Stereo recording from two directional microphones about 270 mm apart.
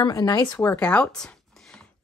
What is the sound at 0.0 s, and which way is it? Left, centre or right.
Speech, centre.